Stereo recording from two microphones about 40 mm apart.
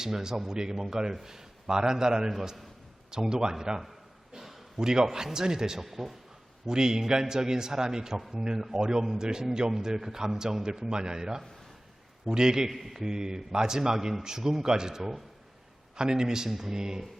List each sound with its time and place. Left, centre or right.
0.0 s a man's voice: centre
4.4 s a sound: centre
5.0 s a man's voice: centre
5.8 s a man's voice: centre
6.7 s a man's voice: centre
12.7 s a man's voice: centre